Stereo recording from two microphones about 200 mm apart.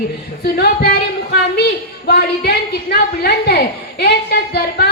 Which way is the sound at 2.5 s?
50° left (ahead or behind).